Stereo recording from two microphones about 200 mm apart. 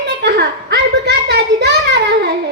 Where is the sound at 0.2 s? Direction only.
55° right (ahead or behind).